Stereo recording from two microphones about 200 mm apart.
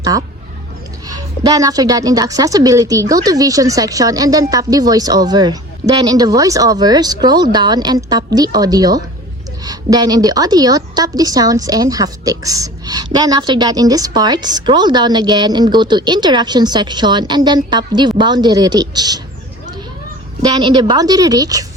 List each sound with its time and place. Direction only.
1.0 s a woman's voice: 20° right (ahead or behind)
20.4 s a woman's voice: 20° right (ahead or behind)